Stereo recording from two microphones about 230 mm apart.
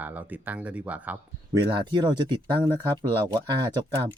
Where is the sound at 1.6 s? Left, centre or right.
Centre.